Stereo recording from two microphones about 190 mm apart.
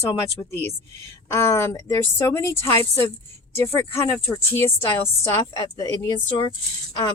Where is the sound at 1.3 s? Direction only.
15° left (ahead or behind).